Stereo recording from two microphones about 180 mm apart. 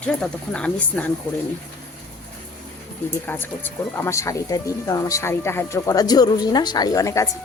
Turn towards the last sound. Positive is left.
turn(degrees=15)  # may be behind; listen again after turning